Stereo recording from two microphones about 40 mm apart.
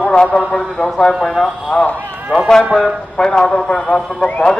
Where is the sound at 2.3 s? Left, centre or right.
Right.